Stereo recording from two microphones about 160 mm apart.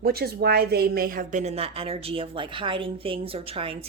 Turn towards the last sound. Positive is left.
turn(degrees=-35)  # may be behind; listen again after turning